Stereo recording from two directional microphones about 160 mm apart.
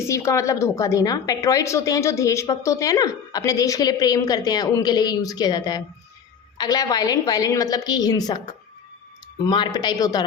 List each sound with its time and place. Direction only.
0.1 s a woman's voice: 20° left (ahead or behind)
9.4 s a woman's voice: 30° left (ahead or behind)